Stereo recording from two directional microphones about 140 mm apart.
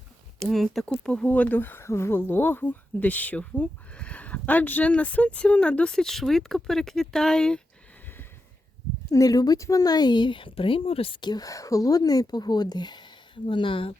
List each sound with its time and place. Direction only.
0.3 s speech: centre (ahead or behind)
9.0 s a woman's voice: 25° left (ahead or behind)